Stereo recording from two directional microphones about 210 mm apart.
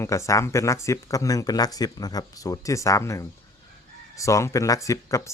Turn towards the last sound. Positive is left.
turn(degrees=15)  # may be behind; listen again after turning